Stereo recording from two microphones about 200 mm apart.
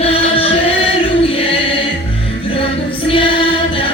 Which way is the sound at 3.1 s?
25° left (ahead or behind).